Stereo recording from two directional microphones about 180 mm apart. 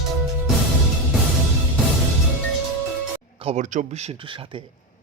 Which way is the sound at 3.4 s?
35° right (ahead or behind).